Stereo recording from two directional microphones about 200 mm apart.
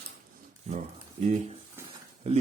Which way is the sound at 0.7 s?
35° right (ahead or behind).